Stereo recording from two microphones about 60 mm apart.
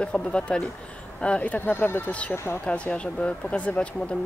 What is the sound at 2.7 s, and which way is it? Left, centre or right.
Speech, centre.